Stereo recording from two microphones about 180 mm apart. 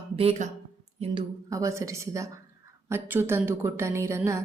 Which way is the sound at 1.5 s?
15° right (ahead or behind).